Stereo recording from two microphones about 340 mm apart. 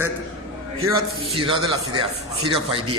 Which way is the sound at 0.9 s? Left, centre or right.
Centre.